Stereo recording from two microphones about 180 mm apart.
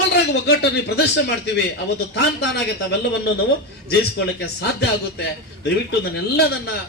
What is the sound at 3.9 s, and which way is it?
Speech, 65° left (ahead or behind).